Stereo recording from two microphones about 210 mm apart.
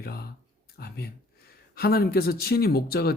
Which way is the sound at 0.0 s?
45° left (ahead or behind).